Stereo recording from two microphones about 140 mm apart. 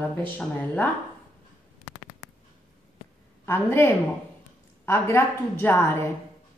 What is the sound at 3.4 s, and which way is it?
Speech, 15° left (ahead or behind).